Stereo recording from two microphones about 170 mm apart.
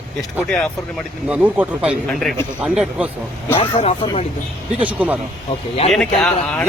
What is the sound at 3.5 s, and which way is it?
Speech, 35° left (ahead or behind).